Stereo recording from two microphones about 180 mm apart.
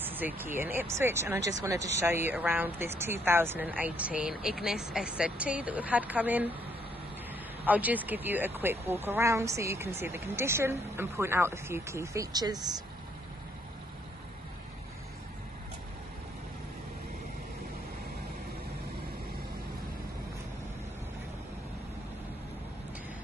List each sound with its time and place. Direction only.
0.0 s speech: 10° right (ahead or behind)
7.6 s speech: 10° right (ahead or behind)